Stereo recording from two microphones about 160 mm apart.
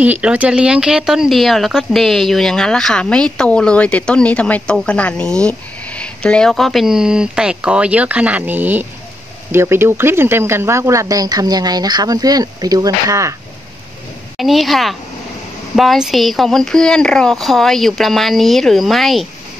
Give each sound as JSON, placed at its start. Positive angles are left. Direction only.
{"t": 0.0, "sound": "speech", "side_deg": -10}
{"t": 14.3, "sound": "speech", "side_deg": 0}